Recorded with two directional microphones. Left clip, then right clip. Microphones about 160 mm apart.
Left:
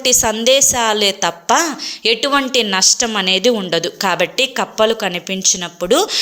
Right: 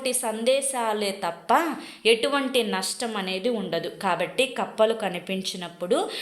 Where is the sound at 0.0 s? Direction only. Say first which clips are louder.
Left 11 dB; 40° left (ahead or behind).